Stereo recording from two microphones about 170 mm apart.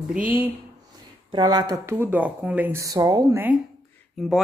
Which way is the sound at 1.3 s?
25° right (ahead or behind).